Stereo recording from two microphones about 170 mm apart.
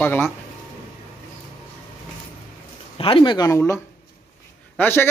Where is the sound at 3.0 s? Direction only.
30° left (ahead or behind).